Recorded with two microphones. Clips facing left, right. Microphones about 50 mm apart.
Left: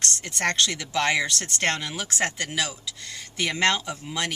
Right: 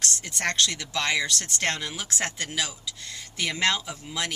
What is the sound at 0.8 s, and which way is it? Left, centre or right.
Speech, centre.